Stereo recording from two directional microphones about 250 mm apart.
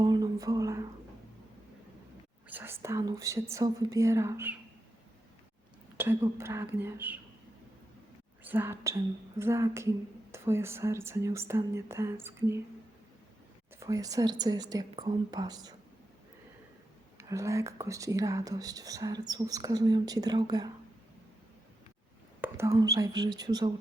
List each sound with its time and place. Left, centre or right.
0.0 s a sound: centre
2.5 s speech: centre
6.0 s speech: centre
8.4 s speech: centre
13.7 s speech: centre
17.2 s speech: centre
22.4 s speech: centre